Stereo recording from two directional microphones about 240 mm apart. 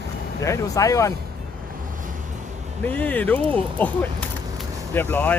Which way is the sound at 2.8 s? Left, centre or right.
Centre.